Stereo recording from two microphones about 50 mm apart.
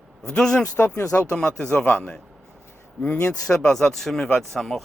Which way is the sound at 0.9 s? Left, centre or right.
Left.